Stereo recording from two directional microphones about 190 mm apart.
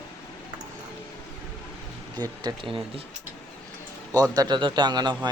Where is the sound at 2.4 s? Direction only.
25° right (ahead or behind).